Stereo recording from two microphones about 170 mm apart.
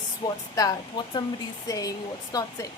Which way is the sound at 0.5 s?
20° left (ahead or behind).